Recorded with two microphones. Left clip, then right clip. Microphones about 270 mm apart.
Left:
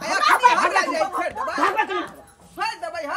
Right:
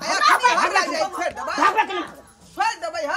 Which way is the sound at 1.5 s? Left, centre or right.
Centre.